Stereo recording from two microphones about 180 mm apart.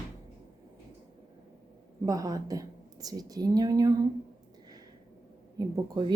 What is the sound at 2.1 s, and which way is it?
Speech, 20° right (ahead or behind).